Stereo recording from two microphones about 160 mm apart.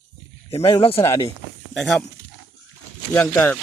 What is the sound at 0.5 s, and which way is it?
Speech, 35° left (ahead or behind).